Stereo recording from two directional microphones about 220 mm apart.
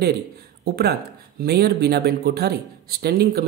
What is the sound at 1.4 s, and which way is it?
A man's voice, 45° right (ahead or behind).